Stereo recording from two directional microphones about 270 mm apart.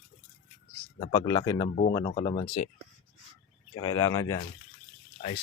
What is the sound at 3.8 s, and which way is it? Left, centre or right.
Speech, centre.